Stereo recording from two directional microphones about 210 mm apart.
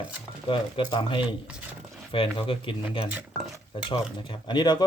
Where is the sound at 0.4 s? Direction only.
20° left (ahead or behind).